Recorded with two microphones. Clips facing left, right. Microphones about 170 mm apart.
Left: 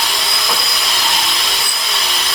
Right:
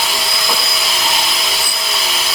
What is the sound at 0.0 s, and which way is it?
Tools, centre (ahead or behind).